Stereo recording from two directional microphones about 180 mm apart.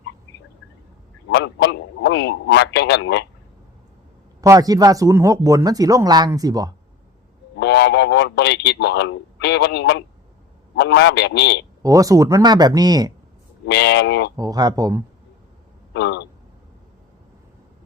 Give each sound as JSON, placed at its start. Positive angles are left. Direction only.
{"t": 1.3, "sound": "a man's voice", "side_deg": 75}
{"t": 4.4, "sound": "speech", "side_deg": -20}
{"t": 7.6, "sound": "a man's voice", "side_deg": 75}
{"t": 11.8, "sound": "speech", "side_deg": -20}
{"t": 13.7, "sound": "a man's voice", "side_deg": 75}
{"t": 14.3, "sound": "speech", "side_deg": -20}
{"t": 15.9, "sound": "speech", "side_deg": 70}